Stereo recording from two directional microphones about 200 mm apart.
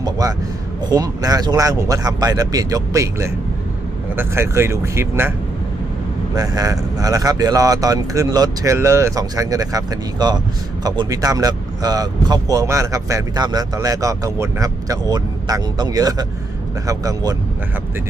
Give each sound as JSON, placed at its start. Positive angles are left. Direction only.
{"t": 0.0, "sound": "a man's voice", "side_deg": -15}
{"t": 6.3, "sound": "speech", "side_deg": -20}